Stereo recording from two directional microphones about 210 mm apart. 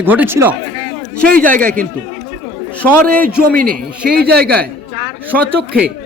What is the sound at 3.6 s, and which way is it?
Speech, 45° right (ahead or behind).